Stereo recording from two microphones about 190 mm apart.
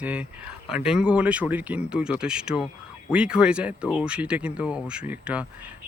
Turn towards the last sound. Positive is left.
turn(degrees=-5)  # may be behind; listen again after turning